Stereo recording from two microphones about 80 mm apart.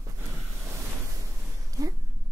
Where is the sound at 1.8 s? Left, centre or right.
Right.